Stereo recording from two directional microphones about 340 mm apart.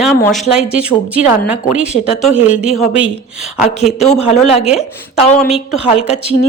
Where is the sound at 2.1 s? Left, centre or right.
Centre.